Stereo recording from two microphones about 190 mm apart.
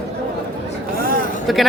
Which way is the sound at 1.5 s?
Centre (ahead or behind).